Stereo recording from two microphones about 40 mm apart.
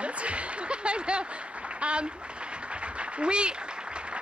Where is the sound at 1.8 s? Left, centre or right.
Right.